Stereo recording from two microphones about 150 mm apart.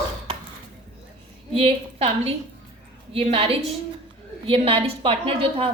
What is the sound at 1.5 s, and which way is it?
A woman's voice, 40° right (ahead or behind).